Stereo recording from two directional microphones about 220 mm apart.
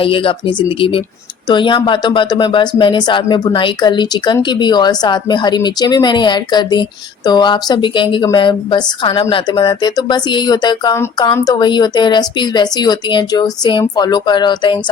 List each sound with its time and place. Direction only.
0.0 s a woman's voice: 25° left (ahead or behind)